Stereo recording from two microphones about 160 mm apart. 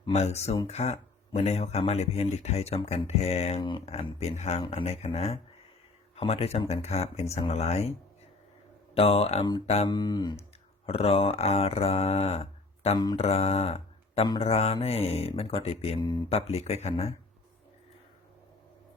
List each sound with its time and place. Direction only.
0.1 s speech: 40° left (ahead or behind)
9.0 s speech: 40° left (ahead or behind)
9.9 s speech: 25° left (ahead or behind)
10.8 s speech: 40° left (ahead or behind)